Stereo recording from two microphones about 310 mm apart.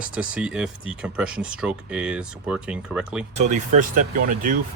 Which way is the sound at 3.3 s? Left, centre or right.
Right.